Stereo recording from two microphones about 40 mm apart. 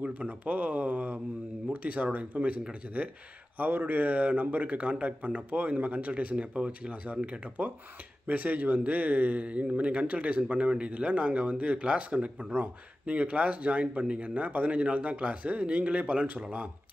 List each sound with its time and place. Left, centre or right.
0.0 s speech: right
3.5 s speech: right
8.3 s speech: right